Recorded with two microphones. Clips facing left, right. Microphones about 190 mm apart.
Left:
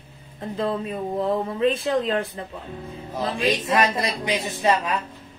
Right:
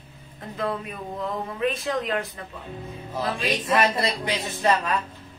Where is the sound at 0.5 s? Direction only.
30° left (ahead or behind).